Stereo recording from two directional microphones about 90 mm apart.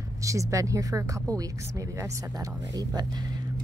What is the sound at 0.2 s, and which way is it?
Speech, 35° right (ahead or behind).